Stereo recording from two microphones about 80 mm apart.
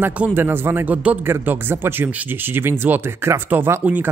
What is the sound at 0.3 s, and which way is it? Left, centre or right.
Speech, right.